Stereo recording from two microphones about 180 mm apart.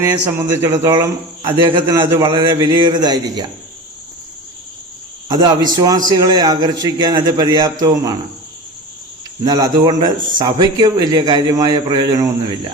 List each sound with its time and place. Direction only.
0.0 s a man's voice: 15° right (ahead or behind)
5.3 s a man's voice: 25° right (ahead or behind)
9.4 s a man's voice: 20° right (ahead or behind)